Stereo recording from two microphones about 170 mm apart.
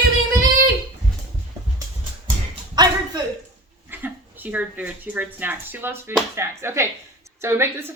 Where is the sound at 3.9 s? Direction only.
10° right (ahead or behind).